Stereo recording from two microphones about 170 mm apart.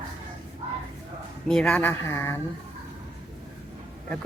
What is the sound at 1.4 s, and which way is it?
Speech, 5° left (ahead or behind).